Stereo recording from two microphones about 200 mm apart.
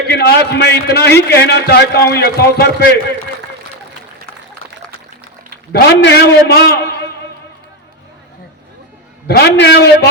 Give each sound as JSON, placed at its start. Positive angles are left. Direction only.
{"t": 0.1, "sound": "a man's voice", "side_deg": 55}
{"t": 5.7, "sound": "a man's voice", "side_deg": 55}
{"t": 9.2, "sound": "a man's voice", "side_deg": 50}